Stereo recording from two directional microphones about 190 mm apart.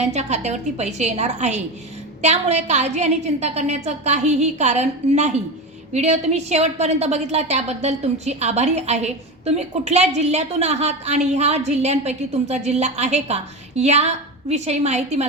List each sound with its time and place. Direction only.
0.0 s a woman's voice: 35° right (ahead or behind)